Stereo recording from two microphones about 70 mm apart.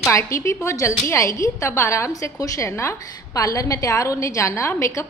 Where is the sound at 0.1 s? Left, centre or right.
Left.